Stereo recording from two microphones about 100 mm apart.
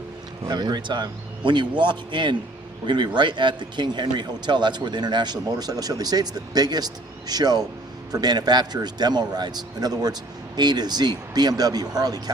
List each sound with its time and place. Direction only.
0.4 s a man's voice: 45° right (ahead or behind)